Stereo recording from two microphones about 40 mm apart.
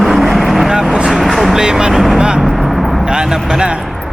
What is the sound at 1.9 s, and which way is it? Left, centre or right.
Vehicle, centre.